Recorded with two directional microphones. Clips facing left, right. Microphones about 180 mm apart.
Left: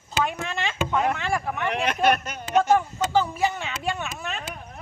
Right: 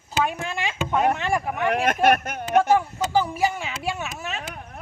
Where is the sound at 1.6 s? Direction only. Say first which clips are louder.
Right 3 dB; 50° right (ahead or behind).